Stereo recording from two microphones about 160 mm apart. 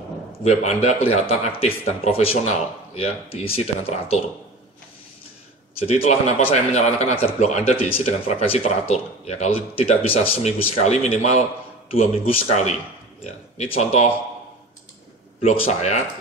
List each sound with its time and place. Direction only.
0.4 s speech: 45° left (ahead or behind)
5.8 s a man's voice: 40° left (ahead or behind)
15.4 s a man's voice: 45° left (ahead or behind)